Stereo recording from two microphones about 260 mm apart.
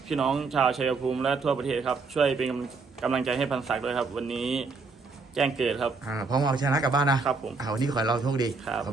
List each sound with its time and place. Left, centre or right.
0.1 s a man's voice: centre
6.1 s a man's voice: centre
8.6 s a man's voice: centre